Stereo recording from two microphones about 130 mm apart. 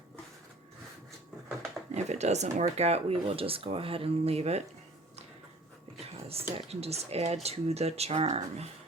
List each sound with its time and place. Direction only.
1.9 s speech: 60° right (ahead or behind)
6.1 s a sound: 50° right (ahead or behind)
6.6 s speech: 55° right (ahead or behind)